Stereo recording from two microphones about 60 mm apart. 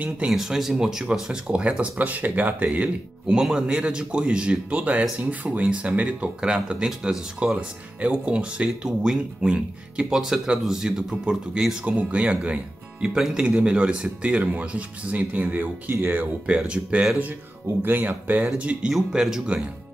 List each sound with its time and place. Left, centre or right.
0.3 s speech: centre; by 3.3 s right
3.3 s speech: centre; by 16.3 s right
16.4 s speech: centre
17.8 s speech: right
18.9 s speech: centre